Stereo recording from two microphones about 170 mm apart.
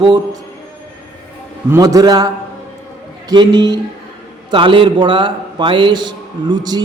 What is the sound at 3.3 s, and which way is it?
A man's voice, 25° right (ahead or behind).